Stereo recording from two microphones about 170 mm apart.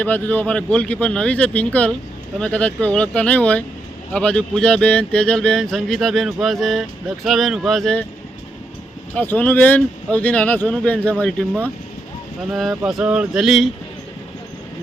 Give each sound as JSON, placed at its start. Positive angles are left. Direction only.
{"t": 0.0, "sound": "speech", "side_deg": 10}
{"t": 9.1, "sound": "speech", "side_deg": 10}
{"t": 12.5, "sound": "speech", "side_deg": 0}